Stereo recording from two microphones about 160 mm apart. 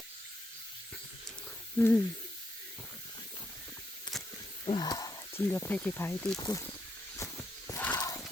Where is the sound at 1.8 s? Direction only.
10° left (ahead or behind).